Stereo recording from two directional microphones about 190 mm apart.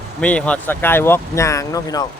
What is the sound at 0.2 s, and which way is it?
Speech, 5° left (ahead or behind).